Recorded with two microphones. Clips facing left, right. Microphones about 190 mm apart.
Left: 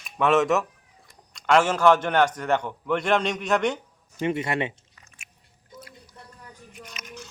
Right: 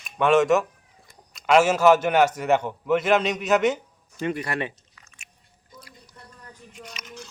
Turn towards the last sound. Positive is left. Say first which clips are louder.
# even
turn(degrees=5)  # may be behind; listen again after turning